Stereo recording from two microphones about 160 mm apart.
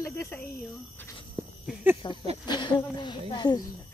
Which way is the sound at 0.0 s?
15° left (ahead or behind).